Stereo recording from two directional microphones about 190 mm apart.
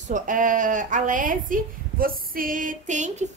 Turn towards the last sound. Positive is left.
turn(degrees=-40)  # may be behind; listen again after turning